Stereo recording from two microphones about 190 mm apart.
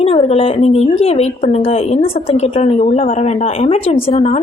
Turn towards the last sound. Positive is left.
turn(degrees=35)  # may be behind; listen again after turning